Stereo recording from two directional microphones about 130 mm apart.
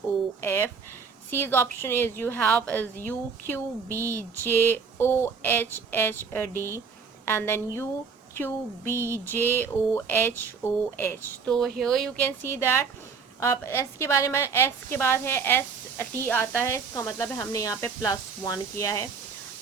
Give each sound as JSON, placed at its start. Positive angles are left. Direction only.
{"t": 0.4, "sound": "a woman's voice", "side_deg": 20}
{"t": 3.9, "sound": "a sound", "side_deg": -20}
{"t": 4.4, "sound": "a woman's voice", "side_deg": 15}
{"t": 8.9, "sound": "a sound", "side_deg": -20}
{"t": 9.2, "sound": "a woman's voice", "side_deg": 15}
{"t": 11.4, "sound": "a woman's voice", "side_deg": 5}